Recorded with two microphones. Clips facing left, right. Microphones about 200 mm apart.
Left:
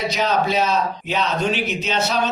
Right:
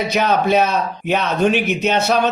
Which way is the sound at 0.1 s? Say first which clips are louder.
Right 6 dB; 55° right (ahead or behind).